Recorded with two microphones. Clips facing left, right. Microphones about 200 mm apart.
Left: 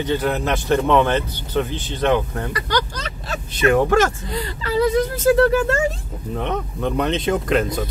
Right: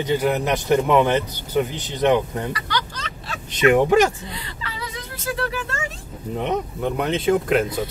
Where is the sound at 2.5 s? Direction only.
45° left (ahead or behind).